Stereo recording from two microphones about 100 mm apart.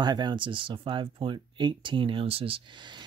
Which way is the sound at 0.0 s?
50° right (ahead or behind).